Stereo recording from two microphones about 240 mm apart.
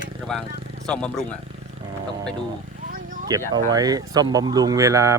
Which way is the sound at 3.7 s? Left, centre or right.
Centre.